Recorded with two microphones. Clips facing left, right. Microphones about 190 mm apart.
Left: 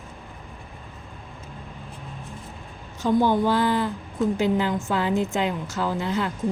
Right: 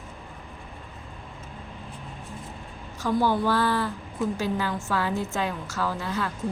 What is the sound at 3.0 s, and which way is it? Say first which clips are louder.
A woman's voice: left 3 dB; 20° left (ahead or behind).